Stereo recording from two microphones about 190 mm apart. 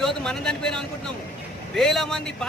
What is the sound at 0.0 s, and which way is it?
Speech, 5° left (ahead or behind).